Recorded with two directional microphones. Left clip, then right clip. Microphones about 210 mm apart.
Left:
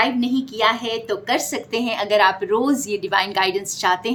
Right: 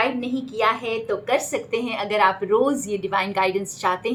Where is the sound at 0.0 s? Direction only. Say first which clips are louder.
Left 3 dB; 45° left (ahead or behind).